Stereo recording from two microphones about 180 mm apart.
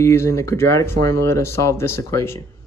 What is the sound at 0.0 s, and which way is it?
Speech, 15° left (ahead or behind).